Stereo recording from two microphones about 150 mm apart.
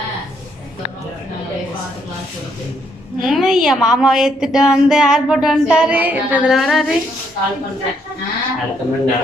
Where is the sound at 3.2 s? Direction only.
Centre (ahead or behind).